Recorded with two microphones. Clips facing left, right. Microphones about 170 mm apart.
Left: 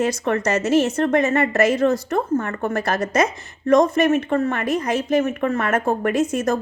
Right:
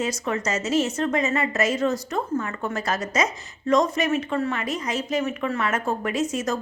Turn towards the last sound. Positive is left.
turn(degrees=55)  # may be behind; listen again after turning